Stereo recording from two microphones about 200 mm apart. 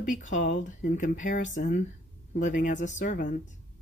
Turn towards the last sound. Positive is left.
turn(degrees=40)  # may be behind; listen again after turning